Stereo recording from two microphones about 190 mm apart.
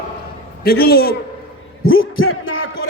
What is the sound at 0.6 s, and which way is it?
Speech, 55° left (ahead or behind).